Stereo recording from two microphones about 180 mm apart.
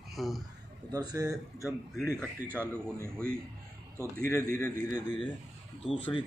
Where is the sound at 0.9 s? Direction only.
20° right (ahead or behind).